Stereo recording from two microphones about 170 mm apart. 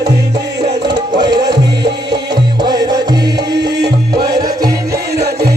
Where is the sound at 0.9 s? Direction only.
25° right (ahead or behind).